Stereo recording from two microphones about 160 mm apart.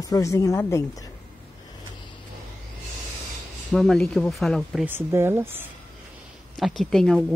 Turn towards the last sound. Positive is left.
turn(degrees=5)  # may be behind; listen again after turning